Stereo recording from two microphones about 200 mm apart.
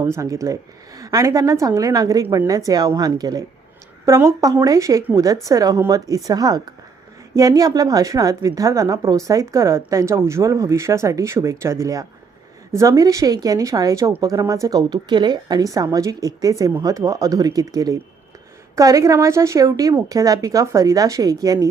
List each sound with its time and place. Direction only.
0.0 s a woman's voice: 15° right (ahead or behind)